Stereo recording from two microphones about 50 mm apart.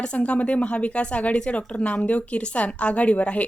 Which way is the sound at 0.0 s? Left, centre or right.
Left.